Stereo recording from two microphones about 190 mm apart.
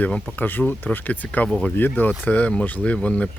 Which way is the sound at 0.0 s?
5° left (ahead or behind).